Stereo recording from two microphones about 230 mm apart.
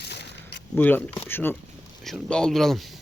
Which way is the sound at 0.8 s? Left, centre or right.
Centre.